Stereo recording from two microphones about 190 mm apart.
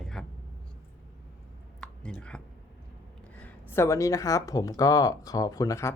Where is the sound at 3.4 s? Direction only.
15° left (ahead or behind).